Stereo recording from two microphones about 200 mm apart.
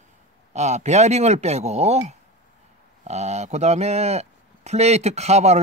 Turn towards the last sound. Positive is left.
turn(degrees=-35)  # may be behind; listen again after turning